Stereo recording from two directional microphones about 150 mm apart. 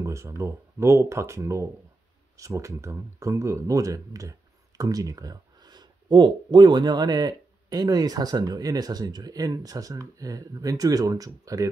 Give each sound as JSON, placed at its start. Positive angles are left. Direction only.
{"t": 0.0, "sound": "speech", "side_deg": -20}